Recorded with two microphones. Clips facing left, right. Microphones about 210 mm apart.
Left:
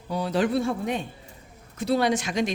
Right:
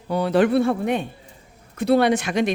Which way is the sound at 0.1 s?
60° right (ahead or behind).